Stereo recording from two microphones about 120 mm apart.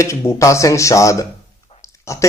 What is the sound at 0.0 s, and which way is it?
Speech, 25° left (ahead or behind).